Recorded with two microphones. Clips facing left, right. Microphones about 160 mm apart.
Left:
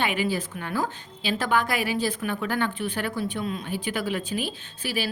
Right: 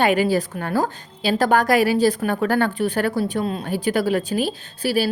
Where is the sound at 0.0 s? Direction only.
40° right (ahead or behind).